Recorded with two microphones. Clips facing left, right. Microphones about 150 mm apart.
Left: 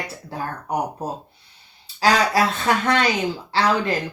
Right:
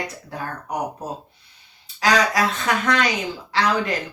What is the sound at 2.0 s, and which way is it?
Speech, 30° left (ahead or behind).